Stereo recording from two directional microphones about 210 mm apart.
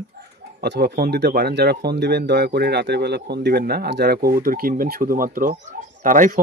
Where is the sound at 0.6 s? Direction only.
50° right (ahead or behind).